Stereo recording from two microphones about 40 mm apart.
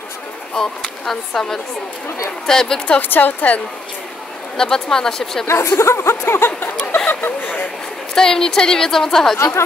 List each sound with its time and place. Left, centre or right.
0.6 s a woman's voice: centre
2.4 s a woman's voice: centre
3.0 s a woman's voice: left
4.6 s a woman's voice: centre
5.6 s speech: left
7.1 s speech: left
8.1 s a woman's voice: centre